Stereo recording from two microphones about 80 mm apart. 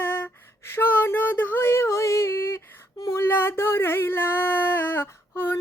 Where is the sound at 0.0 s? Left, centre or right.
Left.